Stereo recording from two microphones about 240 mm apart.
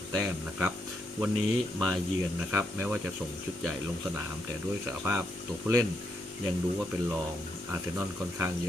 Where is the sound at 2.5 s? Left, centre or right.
Centre.